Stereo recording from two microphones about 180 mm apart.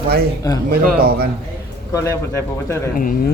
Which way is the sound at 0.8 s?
55° right (ahead or behind).